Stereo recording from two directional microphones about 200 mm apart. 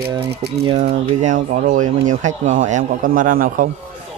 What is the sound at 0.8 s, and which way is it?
Speech, 40° right (ahead or behind).